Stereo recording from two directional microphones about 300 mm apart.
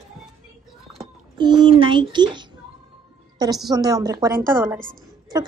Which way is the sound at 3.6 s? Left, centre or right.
Centre.